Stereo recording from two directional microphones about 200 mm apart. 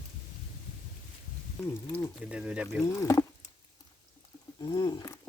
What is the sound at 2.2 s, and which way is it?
Speech, 5° right (ahead or behind).